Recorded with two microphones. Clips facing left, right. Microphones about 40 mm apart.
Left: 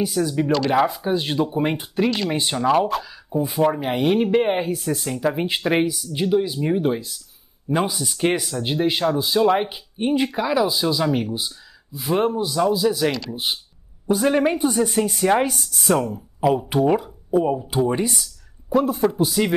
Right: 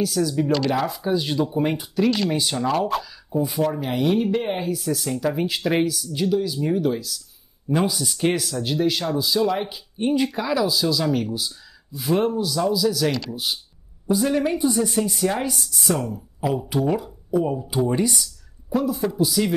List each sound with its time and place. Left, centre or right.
0.0 s speech: left
4.9 s speech: left
7.7 s speech: centre
8.6 s speech: left
11.9 s speech: centre; by 15.5 s left
15.5 s speech: left
16.0 s speech: left
17.8 s speech: centre
18.7 s speech: left